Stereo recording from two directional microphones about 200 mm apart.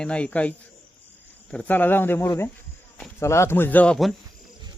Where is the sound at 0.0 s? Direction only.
5° left (ahead or behind).